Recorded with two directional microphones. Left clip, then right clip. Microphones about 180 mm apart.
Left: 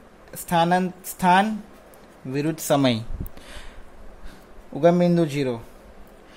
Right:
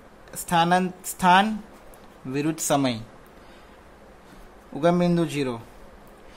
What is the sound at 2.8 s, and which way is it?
Speech, 25° left (ahead or behind).